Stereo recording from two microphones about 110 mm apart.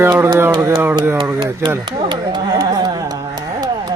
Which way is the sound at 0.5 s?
40° right (ahead or behind).